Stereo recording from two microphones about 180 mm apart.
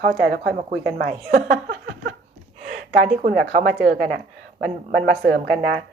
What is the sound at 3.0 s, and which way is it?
A woman's voice, 50° right (ahead or behind).